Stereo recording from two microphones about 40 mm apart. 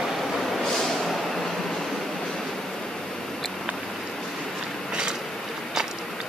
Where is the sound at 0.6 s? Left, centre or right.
Centre.